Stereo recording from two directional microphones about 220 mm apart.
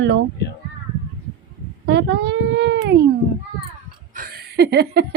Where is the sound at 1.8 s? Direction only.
50° right (ahead or behind).